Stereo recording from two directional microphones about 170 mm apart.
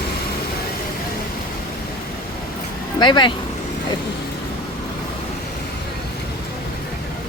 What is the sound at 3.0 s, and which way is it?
Speech, 25° left (ahead or behind).